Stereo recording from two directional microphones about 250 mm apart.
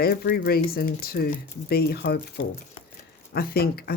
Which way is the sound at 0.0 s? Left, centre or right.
Left.